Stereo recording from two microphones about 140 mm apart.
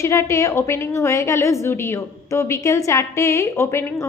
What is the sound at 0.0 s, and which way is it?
A woman's voice, 20° left (ahead or behind).